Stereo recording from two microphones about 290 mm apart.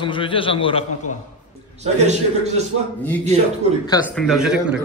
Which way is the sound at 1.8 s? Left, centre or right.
Right.